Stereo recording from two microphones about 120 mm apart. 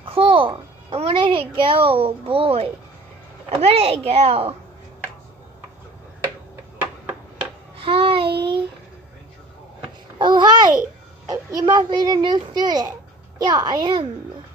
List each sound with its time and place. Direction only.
0.0 s music: 50° right (ahead or behind)
3.4 s speech: 55° right (ahead or behind)
7.8 s child singing: 50° right (ahead or behind)
10.1 s babbling: 40° right (ahead or behind)
11.2 s a child's voice: 30° right (ahead or behind)